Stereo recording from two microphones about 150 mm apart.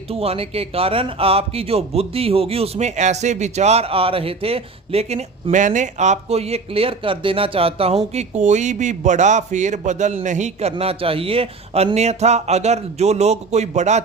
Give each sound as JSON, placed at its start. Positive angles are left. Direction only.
{"t": 0.1, "sound": "a man's voice", "side_deg": -40}